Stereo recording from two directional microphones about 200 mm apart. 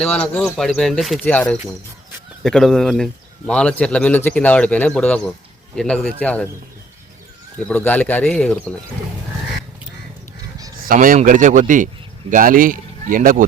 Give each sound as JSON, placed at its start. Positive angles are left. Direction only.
{"t": 0.0, "sound": "a man's voice", "side_deg": 5}
{"t": 7.7, "sound": "speech", "side_deg": 10}
{"t": 10.8, "sound": "speech", "side_deg": -45}